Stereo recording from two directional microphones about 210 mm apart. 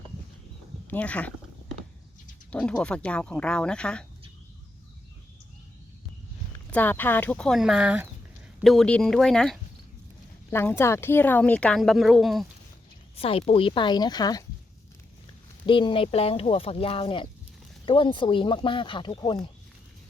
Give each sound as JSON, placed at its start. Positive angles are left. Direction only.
{"t": 0.9, "sound": "speech", "side_deg": 5}
{"t": 2.5, "sound": "speech", "side_deg": 5}
{"t": 6.7, "sound": "speech", "side_deg": 10}
{"t": 13.1, "sound": "speech", "side_deg": 25}
{"t": 15.6, "sound": "speech", "side_deg": 25}